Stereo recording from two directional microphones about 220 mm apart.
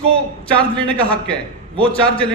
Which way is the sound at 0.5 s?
5° left (ahead or behind).